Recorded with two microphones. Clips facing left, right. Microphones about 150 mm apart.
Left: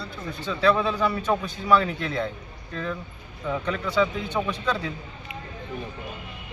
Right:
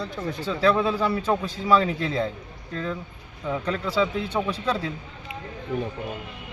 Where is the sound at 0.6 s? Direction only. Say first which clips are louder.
Even; 35° right (ahead or behind).